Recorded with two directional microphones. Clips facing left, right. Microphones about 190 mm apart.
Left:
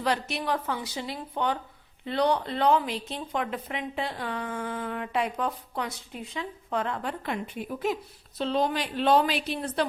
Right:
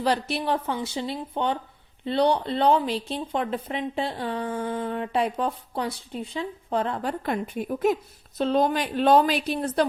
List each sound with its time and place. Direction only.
0.0 s a woman's voice: 30° right (ahead or behind)